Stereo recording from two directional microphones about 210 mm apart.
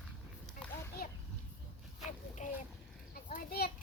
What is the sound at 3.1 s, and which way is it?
Children playing, 45° left (ahead or behind).